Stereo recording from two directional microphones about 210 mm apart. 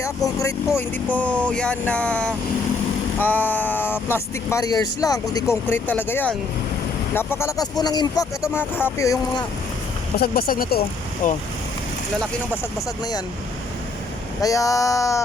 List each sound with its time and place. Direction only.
0.0 s speech: 15° left (ahead or behind)
1.1 s vehicle: 5° left (ahead or behind)
3.2 s speech: 10° left (ahead or behind)
10.2 s speech: 45° left (ahead or behind)
14.4 s speech: 15° left (ahead or behind)